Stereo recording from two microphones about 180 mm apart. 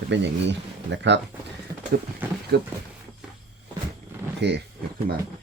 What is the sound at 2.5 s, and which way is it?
Speech, 65° right (ahead or behind).